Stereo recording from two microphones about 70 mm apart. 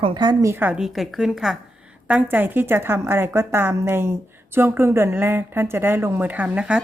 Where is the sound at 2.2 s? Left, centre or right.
Right.